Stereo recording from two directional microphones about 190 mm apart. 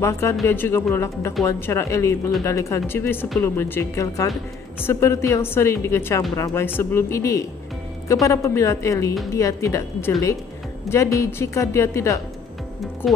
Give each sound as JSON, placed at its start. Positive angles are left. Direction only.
{"t": 0.0, "sound": "a woman's voice", "side_deg": 15}
{"t": 13.0, "sound": "speech", "side_deg": 0}